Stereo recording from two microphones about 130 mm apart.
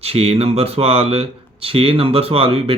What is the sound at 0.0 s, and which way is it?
Speech, 50° right (ahead or behind).